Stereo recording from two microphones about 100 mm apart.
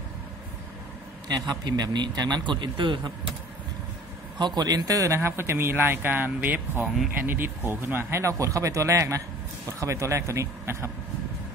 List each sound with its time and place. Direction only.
1.5 s speech: 45° right (ahead or behind)
4.4 s speech: 45° right (ahead or behind); by 10.9 s 25° right (ahead or behind)